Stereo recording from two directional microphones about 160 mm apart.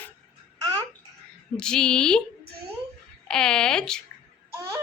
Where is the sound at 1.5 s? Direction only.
5° left (ahead or behind).